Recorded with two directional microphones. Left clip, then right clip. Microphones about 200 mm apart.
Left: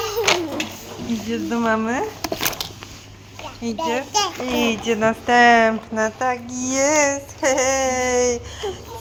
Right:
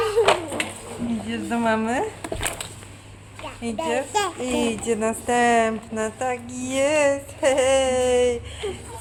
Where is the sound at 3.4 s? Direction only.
15° left (ahead or behind).